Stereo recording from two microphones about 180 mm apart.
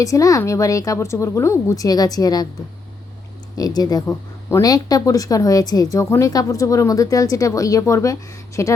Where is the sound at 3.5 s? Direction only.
20° left (ahead or behind).